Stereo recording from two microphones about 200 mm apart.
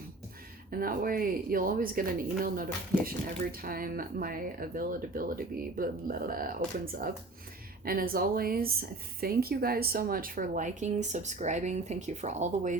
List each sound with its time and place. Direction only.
0.7 s speech: 45° right (ahead or behind)